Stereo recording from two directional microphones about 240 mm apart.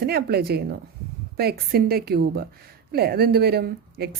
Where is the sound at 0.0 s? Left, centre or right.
Right.